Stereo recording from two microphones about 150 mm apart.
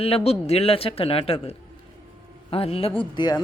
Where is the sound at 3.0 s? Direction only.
30° left (ahead or behind).